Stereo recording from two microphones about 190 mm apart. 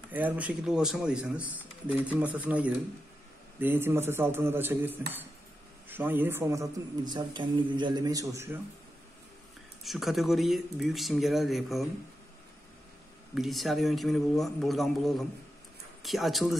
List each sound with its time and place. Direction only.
0.1 s speech: 10° right (ahead or behind)
9.8 s speech: centre (ahead or behind)
13.3 s speech: centre (ahead or behind)